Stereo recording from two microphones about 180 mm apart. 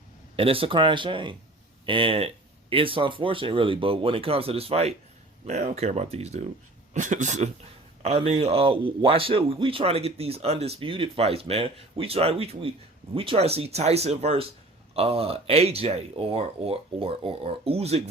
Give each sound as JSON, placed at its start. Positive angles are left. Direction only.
{"t": 0.3, "sound": "speech", "side_deg": -30}